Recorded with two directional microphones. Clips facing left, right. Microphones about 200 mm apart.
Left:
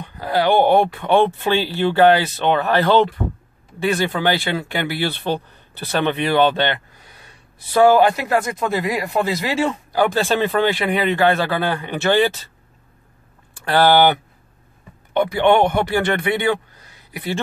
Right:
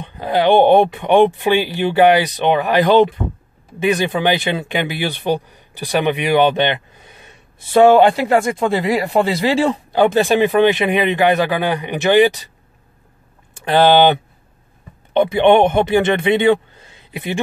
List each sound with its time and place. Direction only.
0.0 s speech: 20° right (ahead or behind)
13.6 s a man's voice: 20° right (ahead or behind)